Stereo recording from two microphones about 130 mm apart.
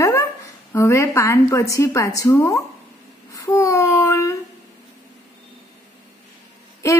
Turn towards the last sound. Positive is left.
turn(degrees=25)  # may be behind; listen again after turning